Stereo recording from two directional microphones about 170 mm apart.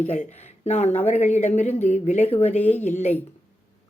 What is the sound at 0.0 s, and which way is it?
Speech, 40° left (ahead or behind).